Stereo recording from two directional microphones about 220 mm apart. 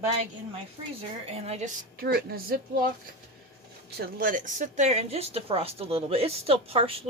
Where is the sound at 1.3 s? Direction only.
30° right (ahead or behind).